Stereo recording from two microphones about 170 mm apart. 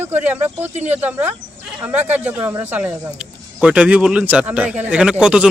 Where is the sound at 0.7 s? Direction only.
45° right (ahead or behind).